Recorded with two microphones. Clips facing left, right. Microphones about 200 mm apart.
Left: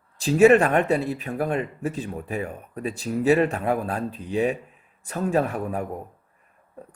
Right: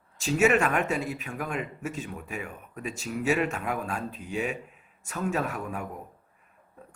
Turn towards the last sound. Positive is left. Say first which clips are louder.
# left 6 dB
turn(degrees=35)  # may be behind; listen again after turning